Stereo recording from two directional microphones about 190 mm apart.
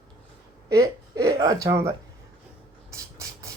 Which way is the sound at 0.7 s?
20° right (ahead or behind).